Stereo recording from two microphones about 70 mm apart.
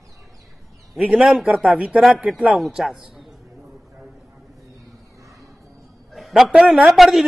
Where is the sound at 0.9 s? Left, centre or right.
Centre.